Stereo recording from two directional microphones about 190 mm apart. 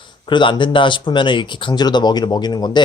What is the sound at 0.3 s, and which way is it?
Speech, 25° left (ahead or behind).